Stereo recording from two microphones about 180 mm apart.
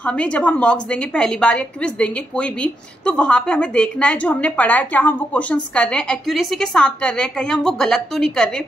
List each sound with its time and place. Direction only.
0.0 s a woman's voice: 5° left (ahead or behind)